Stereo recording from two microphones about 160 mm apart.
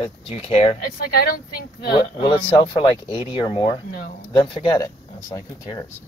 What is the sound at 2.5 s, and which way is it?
Speech, 30° left (ahead or behind).